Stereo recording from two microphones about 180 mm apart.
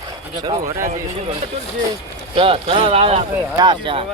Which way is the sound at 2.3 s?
30° right (ahead or behind).